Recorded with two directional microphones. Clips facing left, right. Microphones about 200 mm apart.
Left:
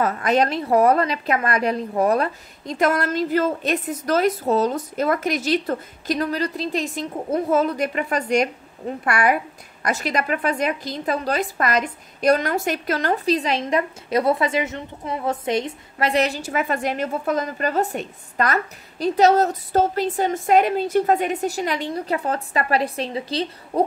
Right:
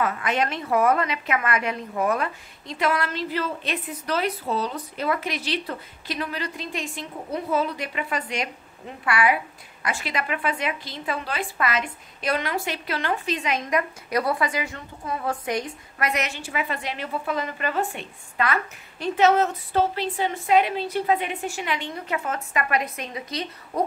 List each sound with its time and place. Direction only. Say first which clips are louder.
0.0 s a woman's voice: left 5 dB; 40° left (ahead or behind)